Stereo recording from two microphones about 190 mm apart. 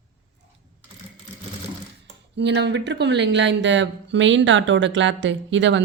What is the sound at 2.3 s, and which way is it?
Speech, 65° right (ahead or behind).